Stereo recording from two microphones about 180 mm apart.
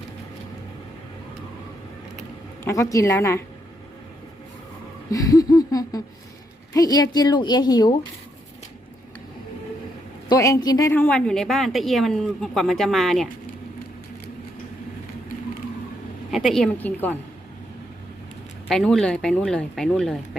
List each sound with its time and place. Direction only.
2.6 s a woman's voice: 15° left (ahead or behind)
5.1 s a woman's voice: 20° left (ahead or behind)
10.2 s a woman's voice: 20° left (ahead or behind); by 13.2 s centre (ahead or behind)
16.3 s a woman's voice: centre (ahead or behind)
18.7 s a woman's voice: centre (ahead or behind)